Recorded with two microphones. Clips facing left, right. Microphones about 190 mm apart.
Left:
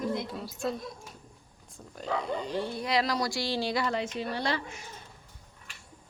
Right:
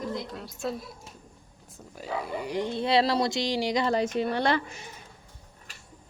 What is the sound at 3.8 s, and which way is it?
Speech, 35° right (ahead or behind).